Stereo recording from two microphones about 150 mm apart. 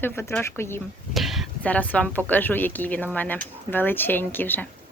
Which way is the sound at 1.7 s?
10° left (ahead or behind).